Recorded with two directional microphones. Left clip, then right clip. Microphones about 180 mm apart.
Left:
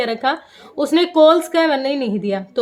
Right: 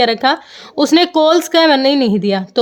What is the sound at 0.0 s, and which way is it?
Speech, 45° right (ahead or behind).